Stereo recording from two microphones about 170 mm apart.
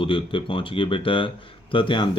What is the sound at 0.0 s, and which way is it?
Speech, 30° left (ahead or behind).